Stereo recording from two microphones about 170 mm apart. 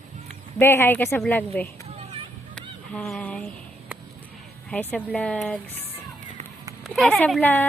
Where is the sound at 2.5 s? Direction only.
5° left (ahead or behind).